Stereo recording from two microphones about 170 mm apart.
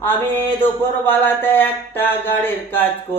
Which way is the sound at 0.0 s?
10° left (ahead or behind).